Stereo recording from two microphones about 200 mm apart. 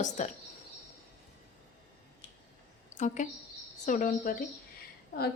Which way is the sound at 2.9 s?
40° left (ahead or behind).